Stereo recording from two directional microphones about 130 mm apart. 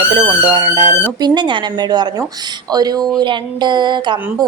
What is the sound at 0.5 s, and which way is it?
A woman's voice, 35° right (ahead or behind).